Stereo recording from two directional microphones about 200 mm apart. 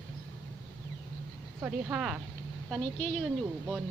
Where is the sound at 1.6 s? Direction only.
5° right (ahead or behind).